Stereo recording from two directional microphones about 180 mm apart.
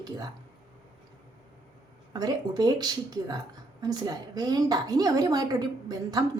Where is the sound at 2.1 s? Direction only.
20° right (ahead or behind).